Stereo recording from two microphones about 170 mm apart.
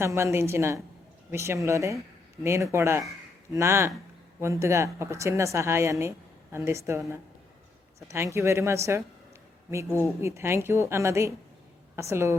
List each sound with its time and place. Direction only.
0.0 s a woman's voice: 15° right (ahead or behind)
8.0 s a woman's voice: 15° right (ahead or behind)